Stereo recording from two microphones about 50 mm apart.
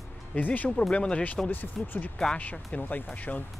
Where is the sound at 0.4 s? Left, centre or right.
Left.